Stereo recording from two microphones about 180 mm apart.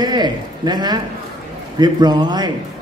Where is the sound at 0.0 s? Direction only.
25° right (ahead or behind).